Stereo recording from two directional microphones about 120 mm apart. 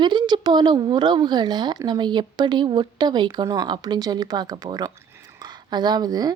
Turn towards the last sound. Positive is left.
turn(degrees=-35)  # may be behind; listen again after turning